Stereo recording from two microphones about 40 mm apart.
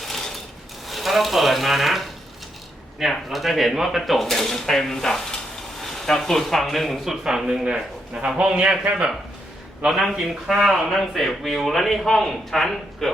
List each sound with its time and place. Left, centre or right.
0.0 s sewing machine: centre
0.9 s speech: centre
7.4 s a man's voice: right
9.9 s speech: centre